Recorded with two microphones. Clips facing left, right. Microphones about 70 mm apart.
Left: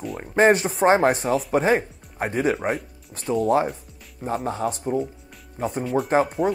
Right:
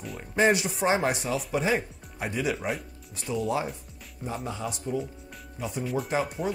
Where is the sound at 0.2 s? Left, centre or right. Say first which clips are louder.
Left 6 dB; left.